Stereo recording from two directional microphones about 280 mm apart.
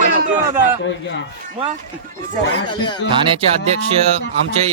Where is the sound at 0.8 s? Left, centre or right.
Left.